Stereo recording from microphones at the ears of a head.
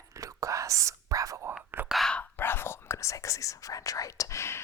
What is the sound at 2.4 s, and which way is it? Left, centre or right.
Whispering, left.